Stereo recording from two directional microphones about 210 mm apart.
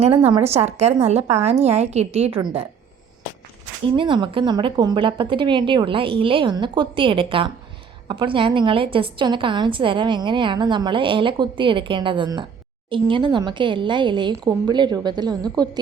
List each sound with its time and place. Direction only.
0.3 s a woman's voice: 30° right (ahead or behind)
3.9 s a woman's voice: 25° right (ahead or behind)